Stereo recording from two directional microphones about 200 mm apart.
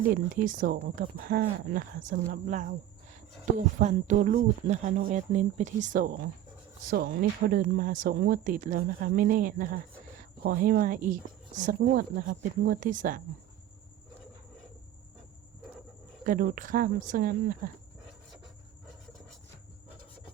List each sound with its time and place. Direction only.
0.1 s speech: 45° right (ahead or behind)
3.8 s speech: 40° right (ahead or behind)
16.2 s speech: 45° right (ahead or behind)